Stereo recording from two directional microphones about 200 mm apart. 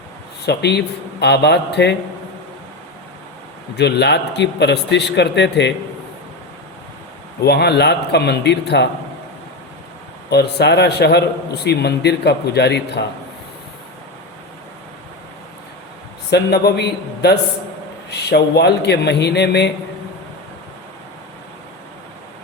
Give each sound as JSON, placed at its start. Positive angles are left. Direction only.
{"t": 0.4, "sound": "a man's voice", "side_deg": 55}
{"t": 3.8, "sound": "a man's voice", "side_deg": 60}
{"t": 7.4, "sound": "a man's voice", "side_deg": 55}
{"t": 10.2, "sound": "a man's voice", "side_deg": 55}
{"t": 16.3, "sound": "a man's voice", "side_deg": 55}